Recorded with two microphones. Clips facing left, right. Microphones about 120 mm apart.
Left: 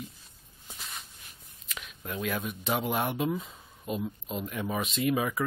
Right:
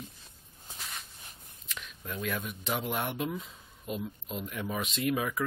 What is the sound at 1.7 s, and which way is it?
Speech, 5° left (ahead or behind).